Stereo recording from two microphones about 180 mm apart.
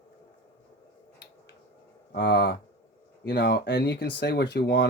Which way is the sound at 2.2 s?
65° left (ahead or behind).